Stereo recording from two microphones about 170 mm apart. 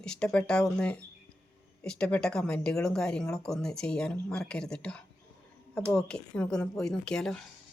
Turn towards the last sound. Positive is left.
turn(degrees=5)  # may be behind; listen again after turning